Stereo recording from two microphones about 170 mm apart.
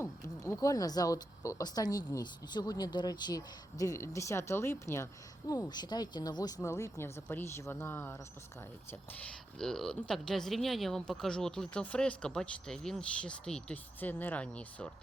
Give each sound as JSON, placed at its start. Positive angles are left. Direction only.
{"t": 0.0, "sound": "a woman's voice", "side_deg": 20}